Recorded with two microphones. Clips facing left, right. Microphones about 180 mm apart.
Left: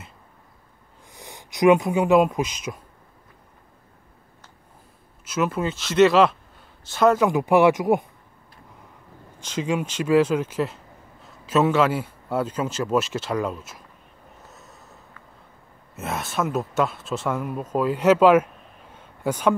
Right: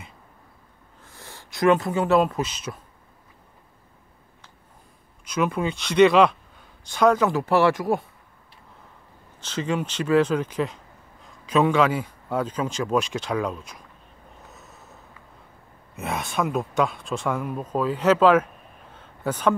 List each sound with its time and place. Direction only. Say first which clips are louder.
1.0 s speech: left 2 dB; 15° left (ahead or behind)
5.2 s a man's voice: even; 5° left (ahead or behind)
9.4 s a man's voice: left 1 dB; 10° left (ahead or behind)
14.4 s a sound: even; centre (ahead or behind)
15.9 s a man's voice: even; centre (ahead or behind)
18.9 s a sound: left 2 dB; 10° left (ahead or behind)